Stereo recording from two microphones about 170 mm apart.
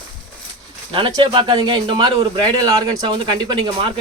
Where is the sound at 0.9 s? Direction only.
30° right (ahead or behind).